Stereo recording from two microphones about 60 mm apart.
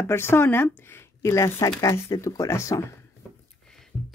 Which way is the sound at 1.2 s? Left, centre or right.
Left.